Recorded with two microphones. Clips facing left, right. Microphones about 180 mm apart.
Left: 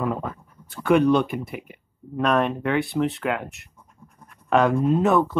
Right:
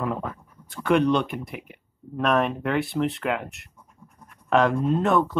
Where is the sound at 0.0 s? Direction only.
Centre (ahead or behind).